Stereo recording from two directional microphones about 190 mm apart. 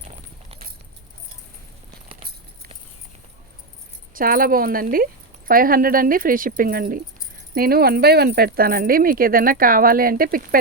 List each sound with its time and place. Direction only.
4.1 s speech: 50° right (ahead or behind)